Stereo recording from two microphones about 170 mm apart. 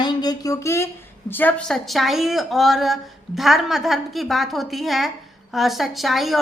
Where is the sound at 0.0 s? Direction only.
25° left (ahead or behind).